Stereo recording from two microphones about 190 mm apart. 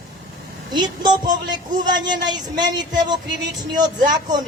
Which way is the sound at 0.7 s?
20° right (ahead or behind).